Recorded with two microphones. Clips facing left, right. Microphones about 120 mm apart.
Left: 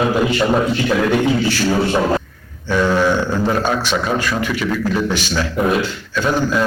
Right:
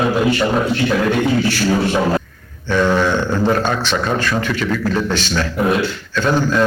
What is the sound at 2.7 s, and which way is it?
A man's voice, 5° left (ahead or behind).